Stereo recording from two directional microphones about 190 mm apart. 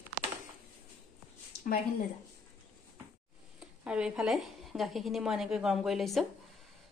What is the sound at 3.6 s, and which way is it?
Speech, 5° right (ahead or behind).